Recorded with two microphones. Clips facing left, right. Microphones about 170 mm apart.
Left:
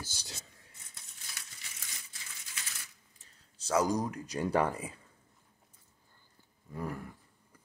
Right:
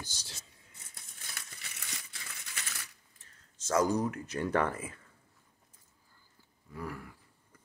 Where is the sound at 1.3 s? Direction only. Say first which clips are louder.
Right 3 dB; 70° right (ahead or behind).